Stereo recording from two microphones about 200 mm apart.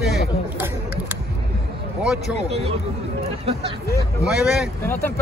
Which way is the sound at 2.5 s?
30° right (ahead or behind).